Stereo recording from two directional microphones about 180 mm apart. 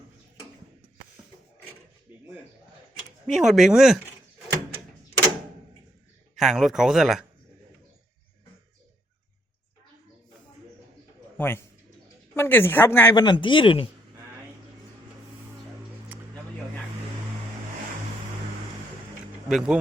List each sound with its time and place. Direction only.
3.2 s a man's voice: centre (ahead or behind)
6.3 s a man's voice: centre (ahead or behind)
11.3 s a man's voice: 10° left (ahead or behind)
13.1 s speech: 25° left (ahead or behind)
16.1 s a sound: 10° right (ahead or behind)
19.5 s a man's voice: centre (ahead or behind)